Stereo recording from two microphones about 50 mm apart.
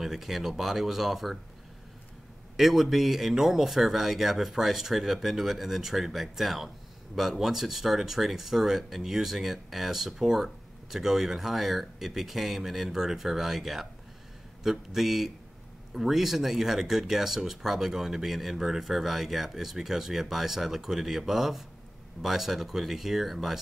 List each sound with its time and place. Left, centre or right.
0.0 s speech: centre
2.5 s speech: centre